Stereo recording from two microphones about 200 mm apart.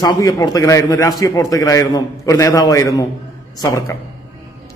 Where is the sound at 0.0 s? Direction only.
20° left (ahead or behind).